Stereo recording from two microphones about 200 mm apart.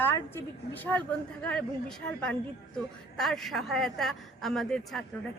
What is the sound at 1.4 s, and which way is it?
A woman's voice, 5° left (ahead or behind).